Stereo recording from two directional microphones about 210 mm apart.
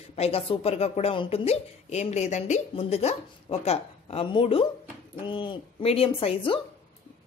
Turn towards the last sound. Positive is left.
turn(degrees=25)  # may be behind; listen again after turning